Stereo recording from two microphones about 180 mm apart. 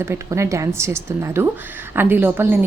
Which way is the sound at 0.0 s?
15° right (ahead or behind).